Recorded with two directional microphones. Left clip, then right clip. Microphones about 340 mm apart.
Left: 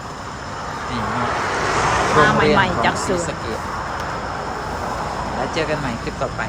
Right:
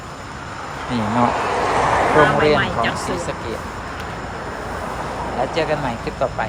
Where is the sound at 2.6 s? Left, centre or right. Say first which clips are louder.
Left 3 dB; left.